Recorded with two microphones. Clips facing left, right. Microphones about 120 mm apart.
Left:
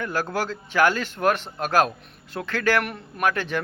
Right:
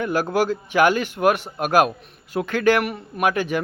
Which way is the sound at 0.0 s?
15° right (ahead or behind).